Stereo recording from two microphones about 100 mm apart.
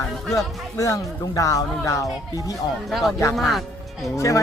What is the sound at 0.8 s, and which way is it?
Speech, 35° left (ahead or behind).